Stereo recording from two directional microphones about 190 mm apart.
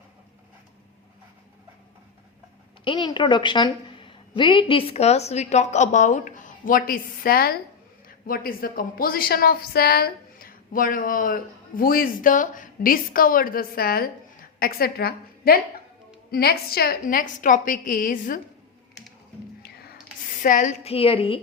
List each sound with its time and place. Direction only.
2.8 s a woman's voice: 25° left (ahead or behind); by 18.3 s 45° left (ahead or behind)
19.6 s a sound: 55° left (ahead or behind)
20.4 s a woman's voice: 45° left (ahead or behind); by 21.4 s 30° left (ahead or behind)